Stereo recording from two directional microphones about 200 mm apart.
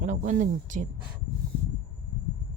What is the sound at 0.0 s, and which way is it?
Speech, 40° right (ahead or behind).